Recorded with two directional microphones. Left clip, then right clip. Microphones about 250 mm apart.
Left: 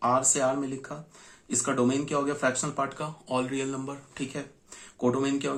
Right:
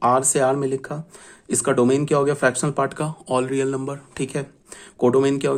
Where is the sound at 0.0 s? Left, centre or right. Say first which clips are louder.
Right 7 dB; right.